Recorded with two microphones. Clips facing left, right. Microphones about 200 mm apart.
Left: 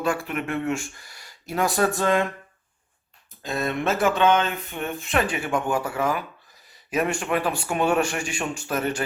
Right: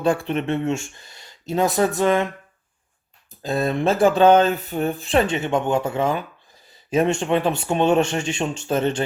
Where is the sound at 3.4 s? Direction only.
30° right (ahead or behind).